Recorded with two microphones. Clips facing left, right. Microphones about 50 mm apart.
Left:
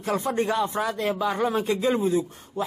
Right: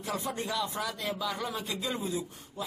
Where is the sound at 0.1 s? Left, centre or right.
Left.